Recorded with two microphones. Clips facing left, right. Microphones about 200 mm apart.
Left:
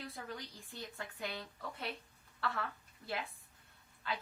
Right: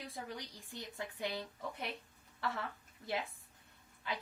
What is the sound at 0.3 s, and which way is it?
A woman's voice, 20° right (ahead or behind).